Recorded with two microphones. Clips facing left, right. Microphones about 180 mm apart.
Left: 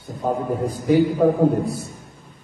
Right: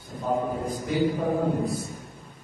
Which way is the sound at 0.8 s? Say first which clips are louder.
Left 9 dB; 60° left (ahead or behind).